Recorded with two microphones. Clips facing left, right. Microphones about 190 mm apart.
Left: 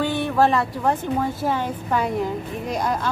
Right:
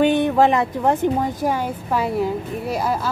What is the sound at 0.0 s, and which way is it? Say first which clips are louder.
A woman's voice: right 4 dB; 20° right (ahead or behind).